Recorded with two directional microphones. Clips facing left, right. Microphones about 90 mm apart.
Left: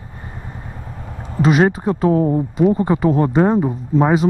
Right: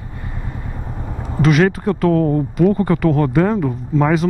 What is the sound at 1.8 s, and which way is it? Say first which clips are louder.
Speech: even; 20° left (ahead or behind).